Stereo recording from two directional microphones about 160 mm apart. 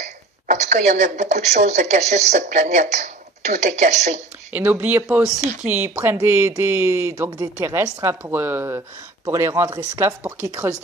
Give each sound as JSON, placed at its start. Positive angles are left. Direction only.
{"t": 0.0, "sound": "a woman's voice", "side_deg": -50}
{"t": 4.5, "sound": "a woman's voice", "side_deg": -10}
{"t": 5.4, "sound": "speech", "side_deg": -45}
{"t": 5.7, "sound": "a woman's voice", "side_deg": -15}